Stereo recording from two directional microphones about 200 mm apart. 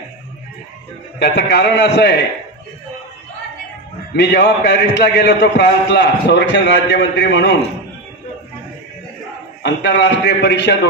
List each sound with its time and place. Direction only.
1.2 s a man's voice: 55° left (ahead or behind)
4.2 s a man's voice: 55° left (ahead or behind)
9.6 s a man's voice: 60° left (ahead or behind)